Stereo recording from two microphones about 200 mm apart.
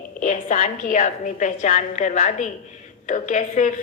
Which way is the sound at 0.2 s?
40° left (ahead or behind).